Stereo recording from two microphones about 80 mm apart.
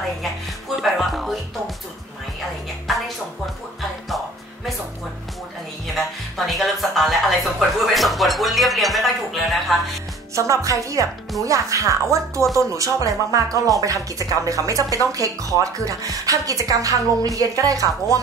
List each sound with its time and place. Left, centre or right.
0.7 s music: centre
2.9 s music: centre
5.9 s music: centre
7.8 s speech: centre
10.3 s a woman's voice: right